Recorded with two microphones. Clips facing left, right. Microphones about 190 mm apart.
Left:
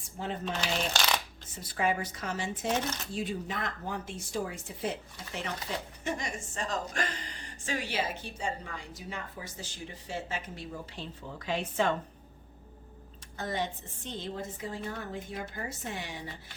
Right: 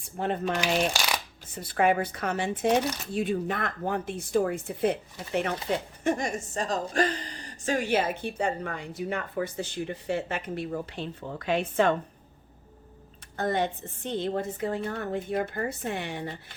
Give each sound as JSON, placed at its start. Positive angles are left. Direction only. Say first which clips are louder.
{"t": 0.2, "sound": "speech", "louder": "right 6 dB", "side_deg": -60}
{"t": 0.9, "sound": "shuffling cards", "louder": "even", "side_deg": -10}
{"t": 1.5, "sound": "speech", "louder": "right 6 dB", "side_deg": -60}
{"t": 13.3, "sound": "speech", "louder": "right 7 dB", "side_deg": -55}